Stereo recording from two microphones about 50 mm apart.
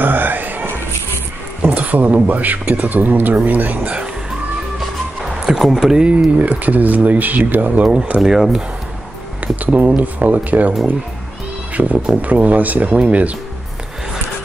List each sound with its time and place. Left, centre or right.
0.0 s a sound: right
1.6 s speech: right
5.6 s speech: centre
6.0 s speech: right
8.2 s speech: centre
9.7 s speech: right
11.8 s speech: right